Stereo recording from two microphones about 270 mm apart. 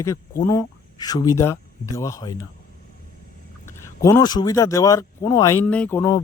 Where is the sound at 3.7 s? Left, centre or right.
Centre.